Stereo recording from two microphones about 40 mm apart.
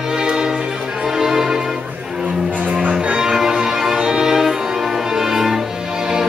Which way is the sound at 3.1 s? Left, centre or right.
Centre.